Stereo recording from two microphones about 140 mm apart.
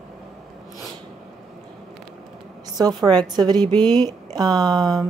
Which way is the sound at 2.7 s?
30° right (ahead or behind).